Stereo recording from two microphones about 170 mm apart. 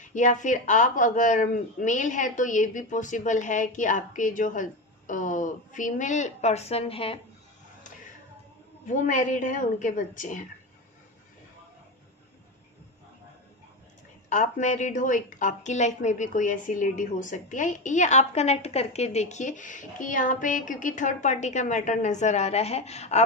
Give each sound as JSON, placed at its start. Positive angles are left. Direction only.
{"t": 0.0, "sound": "a woman's voice", "side_deg": 45}
{"t": 8.8, "sound": "a woman's voice", "side_deg": 50}
{"t": 14.3, "sound": "a woman's voice", "side_deg": 45}